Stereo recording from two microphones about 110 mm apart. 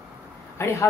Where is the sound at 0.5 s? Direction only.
25° left (ahead or behind).